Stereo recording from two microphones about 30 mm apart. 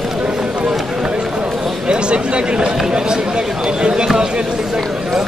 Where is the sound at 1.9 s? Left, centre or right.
Right.